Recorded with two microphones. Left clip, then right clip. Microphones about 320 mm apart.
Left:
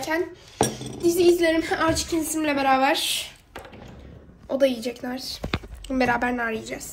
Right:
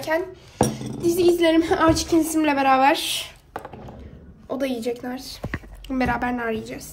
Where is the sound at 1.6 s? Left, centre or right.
Right.